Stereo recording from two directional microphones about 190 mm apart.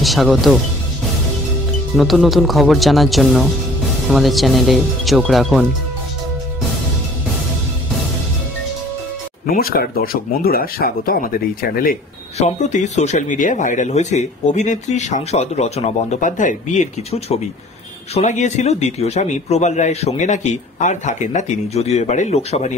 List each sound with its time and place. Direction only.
0.0 s speech: centre (ahead or behind)
2.0 s speech: centre (ahead or behind)
9.5 s speech: 50° left (ahead or behind)
12.4 s speech: 35° left (ahead or behind)